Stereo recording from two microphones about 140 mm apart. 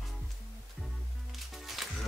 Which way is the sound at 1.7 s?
Centre (ahead or behind).